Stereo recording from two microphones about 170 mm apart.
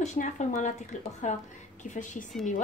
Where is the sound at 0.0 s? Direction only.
45° left (ahead or behind).